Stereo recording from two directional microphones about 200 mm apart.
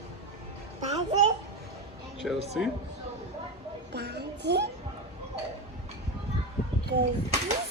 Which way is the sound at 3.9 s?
55° right (ahead or behind).